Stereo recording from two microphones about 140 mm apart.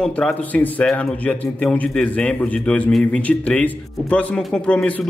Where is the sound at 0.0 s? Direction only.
5° left (ahead or behind).